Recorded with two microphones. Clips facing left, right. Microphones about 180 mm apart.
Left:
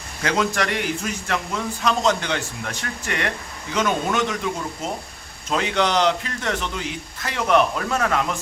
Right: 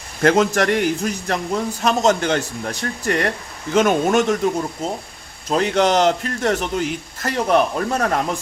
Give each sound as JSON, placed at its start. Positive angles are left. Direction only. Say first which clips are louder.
{"t": 0.2, "sound": "speech", "louder": "right 7 dB", "side_deg": -50}